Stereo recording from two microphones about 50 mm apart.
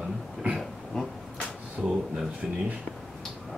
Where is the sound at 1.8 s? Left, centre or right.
Centre.